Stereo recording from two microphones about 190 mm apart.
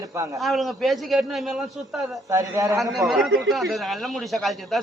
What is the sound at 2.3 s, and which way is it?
Speech, 15° right (ahead or behind).